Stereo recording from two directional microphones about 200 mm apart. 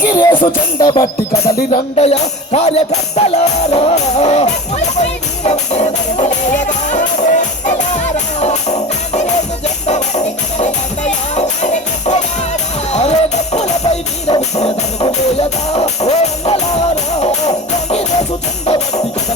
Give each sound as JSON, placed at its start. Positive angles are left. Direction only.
{"t": 0.3, "sound": "music", "side_deg": 20}
{"t": 1.7, "sound": "music", "side_deg": 30}
{"t": 10.6, "sound": "music", "side_deg": 35}